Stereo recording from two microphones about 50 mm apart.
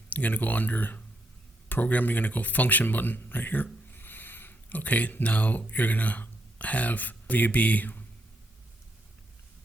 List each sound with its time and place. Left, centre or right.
0.1 s speech: left